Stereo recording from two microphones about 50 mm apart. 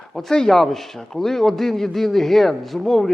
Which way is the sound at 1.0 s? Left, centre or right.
Centre.